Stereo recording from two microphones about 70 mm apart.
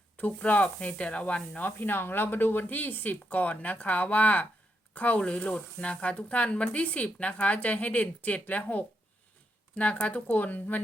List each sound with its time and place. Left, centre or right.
0.2 s speech: left